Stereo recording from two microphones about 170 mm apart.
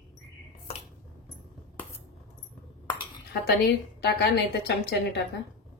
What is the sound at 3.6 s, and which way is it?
A woman's voice, 70° left (ahead or behind).